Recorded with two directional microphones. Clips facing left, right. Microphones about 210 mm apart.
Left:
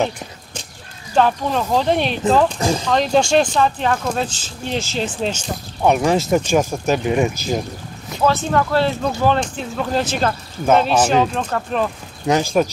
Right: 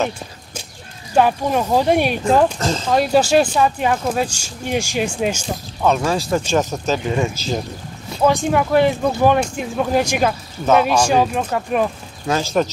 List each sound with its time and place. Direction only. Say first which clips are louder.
1.1 s speech: right 1 dB; 10° right (ahead or behind)
5.8 s speech: left 2 dB; 20° left (ahead or behind)
8.3 s speech: right 2 dB; 15° right (ahead or behind)
12.3 s speech: left 2 dB; 15° left (ahead or behind)